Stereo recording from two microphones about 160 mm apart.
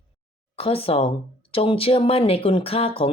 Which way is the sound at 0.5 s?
35° left (ahead or behind).